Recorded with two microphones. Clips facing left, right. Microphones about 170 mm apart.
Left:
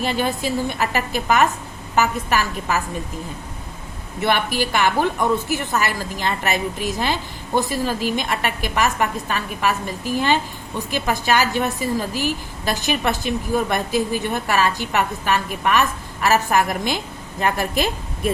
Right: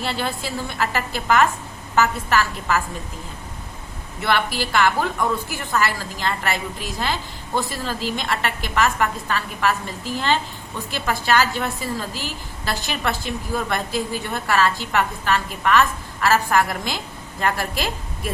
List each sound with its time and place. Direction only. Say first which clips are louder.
0.0 s a woman's voice: left 4 dB; 15° left (ahead or behind)
4.2 s a woman's voice: left 2 dB; 15° left (ahead or behind)